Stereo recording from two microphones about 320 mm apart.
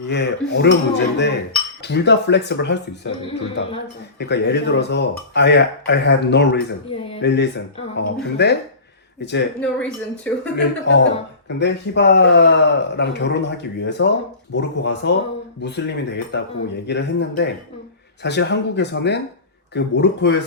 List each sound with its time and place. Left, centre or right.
0.0 s speech: left
4.2 s speech: left
6.9 s a sound: centre
7.2 s speech: left
9.6 s speech: centre
10.8 s speech: left